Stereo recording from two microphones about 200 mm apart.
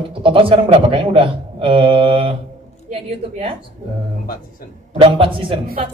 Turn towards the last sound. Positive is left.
turn(degrees=-25)  # may be behind; listen again after turning